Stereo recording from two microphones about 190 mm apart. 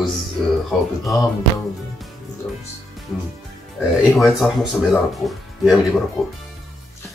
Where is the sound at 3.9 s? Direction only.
Centre (ahead or behind).